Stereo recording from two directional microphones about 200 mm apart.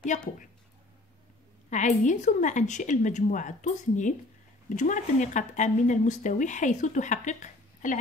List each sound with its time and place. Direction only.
0.1 s speech: 35° left (ahead or behind)
1.7 s speech: 35° left (ahead or behind)